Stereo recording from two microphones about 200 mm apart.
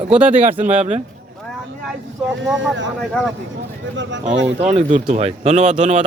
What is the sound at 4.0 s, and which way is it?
Speech, 65° right (ahead or behind).